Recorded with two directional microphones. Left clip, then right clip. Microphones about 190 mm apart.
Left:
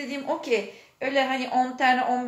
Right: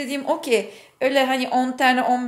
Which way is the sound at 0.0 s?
50° right (ahead or behind).